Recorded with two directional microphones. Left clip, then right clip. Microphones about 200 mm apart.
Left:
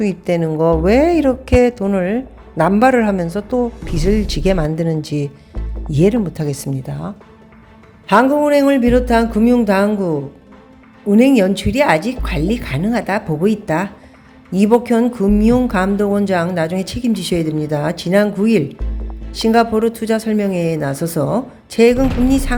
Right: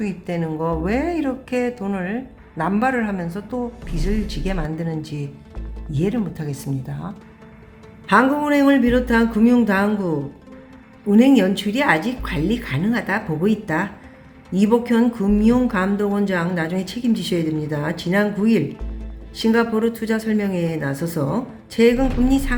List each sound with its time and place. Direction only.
0.0 s a woman's voice: 35° left (ahead or behind)
11.1 s a woman's voice: 30° left (ahead or behind)